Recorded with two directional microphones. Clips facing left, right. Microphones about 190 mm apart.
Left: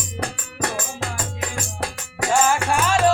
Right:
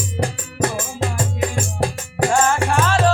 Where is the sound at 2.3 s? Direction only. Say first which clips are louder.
Even; 10° left (ahead or behind).